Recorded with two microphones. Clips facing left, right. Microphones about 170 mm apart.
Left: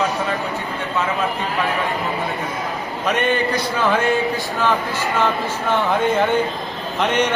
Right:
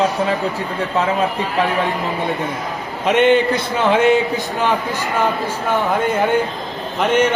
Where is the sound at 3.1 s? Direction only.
25° right (ahead or behind).